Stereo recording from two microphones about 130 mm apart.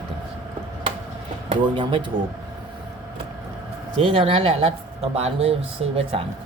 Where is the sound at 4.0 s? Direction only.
40° right (ahead or behind).